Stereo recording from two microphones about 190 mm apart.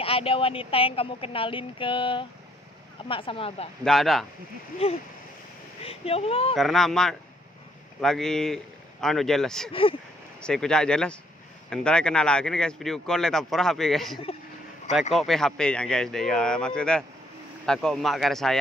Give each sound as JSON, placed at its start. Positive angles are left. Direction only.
{"t": 0.0, "sound": "speech", "side_deg": 30}
{"t": 3.8, "sound": "speech", "side_deg": 0}
{"t": 4.8, "sound": "a woman's voice", "side_deg": 30}
{"t": 6.5, "sound": "speech", "side_deg": 0}
{"t": 9.7, "sound": "speech", "side_deg": 30}
{"t": 10.4, "sound": "speech", "side_deg": 5}